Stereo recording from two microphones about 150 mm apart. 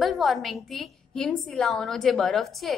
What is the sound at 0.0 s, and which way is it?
A woman's voice, centre (ahead or behind).